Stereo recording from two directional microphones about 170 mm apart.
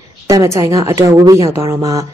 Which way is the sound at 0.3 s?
20° right (ahead or behind).